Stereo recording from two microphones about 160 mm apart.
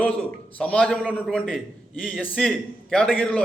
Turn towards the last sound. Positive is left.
turn(degrees=10)  # may be behind; listen again after turning